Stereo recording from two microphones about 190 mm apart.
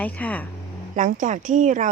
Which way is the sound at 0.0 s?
10° left (ahead or behind).